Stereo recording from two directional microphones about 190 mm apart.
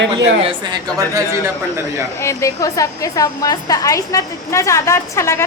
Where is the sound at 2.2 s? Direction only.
15° left (ahead or behind).